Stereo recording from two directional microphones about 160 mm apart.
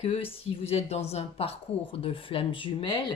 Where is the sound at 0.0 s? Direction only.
35° left (ahead or behind).